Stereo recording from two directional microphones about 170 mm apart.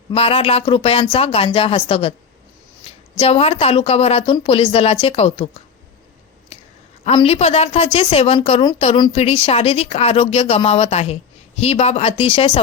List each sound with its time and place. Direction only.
0.1 s speech: 35° left (ahead or behind)
3.2 s speech: 35° left (ahead or behind)
7.0 s speech: 35° left (ahead or behind)